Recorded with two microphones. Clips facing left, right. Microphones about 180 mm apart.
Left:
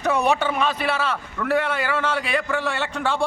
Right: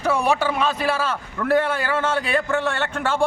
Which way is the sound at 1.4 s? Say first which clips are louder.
Right 3 dB; 25° right (ahead or behind).